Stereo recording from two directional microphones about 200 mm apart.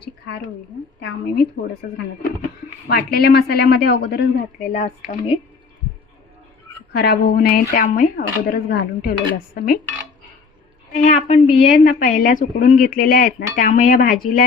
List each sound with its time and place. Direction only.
2.8 s a woman's voice: 50° left (ahead or behind)
4.7 s speech: 35° left (ahead or behind)
6.9 s a woman's voice: 50° left (ahead or behind)
10.9 s a woman's voice: 35° left (ahead or behind)